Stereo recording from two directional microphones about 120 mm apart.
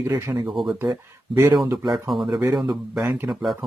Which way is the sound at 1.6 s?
35° right (ahead or behind).